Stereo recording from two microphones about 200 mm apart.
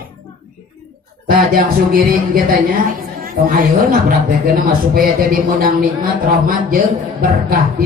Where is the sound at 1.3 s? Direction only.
45° right (ahead or behind).